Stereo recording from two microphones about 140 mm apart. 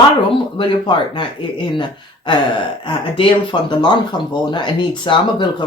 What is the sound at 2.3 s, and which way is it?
Speech, 35° left (ahead or behind).